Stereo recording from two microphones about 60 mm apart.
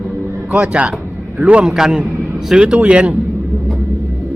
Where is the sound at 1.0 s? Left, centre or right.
Right.